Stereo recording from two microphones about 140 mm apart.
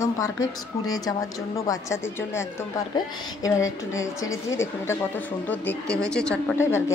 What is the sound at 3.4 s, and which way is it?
A woman's voice, 25° left (ahead or behind).